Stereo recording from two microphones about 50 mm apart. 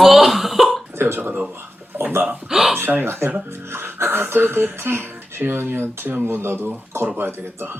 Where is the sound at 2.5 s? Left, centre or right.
Centre.